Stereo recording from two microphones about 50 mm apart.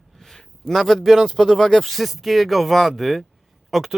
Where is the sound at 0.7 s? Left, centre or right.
Centre.